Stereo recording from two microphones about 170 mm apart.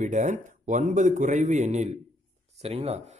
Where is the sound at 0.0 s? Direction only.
45° right (ahead or behind).